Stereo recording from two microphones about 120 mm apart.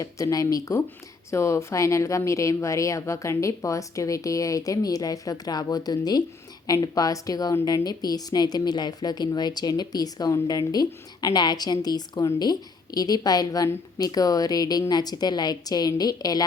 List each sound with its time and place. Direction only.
0.0 s a woman's voice: 30° left (ahead or behind)